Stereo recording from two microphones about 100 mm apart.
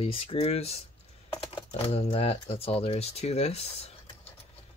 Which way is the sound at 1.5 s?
65° left (ahead or behind).